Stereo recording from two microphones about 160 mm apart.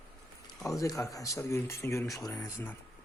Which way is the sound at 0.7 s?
20° left (ahead or behind).